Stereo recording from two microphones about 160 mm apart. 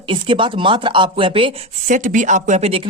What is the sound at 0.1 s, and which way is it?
Speech, 30° right (ahead or behind).